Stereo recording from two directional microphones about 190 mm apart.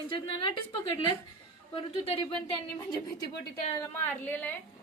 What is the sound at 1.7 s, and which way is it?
A woman's voice, 30° left (ahead or behind).